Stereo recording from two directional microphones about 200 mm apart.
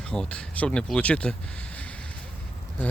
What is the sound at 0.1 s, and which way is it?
Speech, 5° left (ahead or behind).